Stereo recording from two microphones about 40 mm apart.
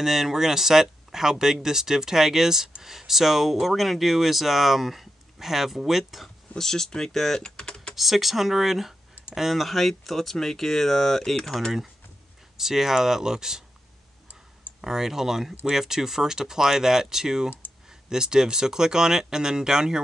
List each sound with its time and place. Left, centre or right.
0.0 s speech: centre
6.6 s speech: centre
7.3 s typing: centre
7.9 s speech: centre
12.5 s speech: centre
14.8 s speech: centre